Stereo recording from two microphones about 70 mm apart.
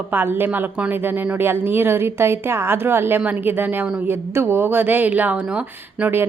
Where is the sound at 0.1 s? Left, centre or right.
Right.